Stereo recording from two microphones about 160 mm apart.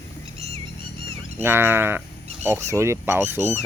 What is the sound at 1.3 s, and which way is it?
Speech, 15° right (ahead or behind).